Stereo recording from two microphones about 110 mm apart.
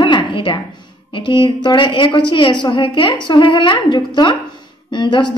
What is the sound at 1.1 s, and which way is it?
A woman's voice, 45° left (ahead or behind).